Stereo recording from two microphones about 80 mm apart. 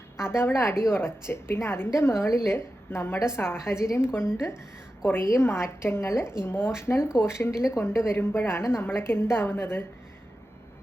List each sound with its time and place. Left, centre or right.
0.2 s a woman's voice: left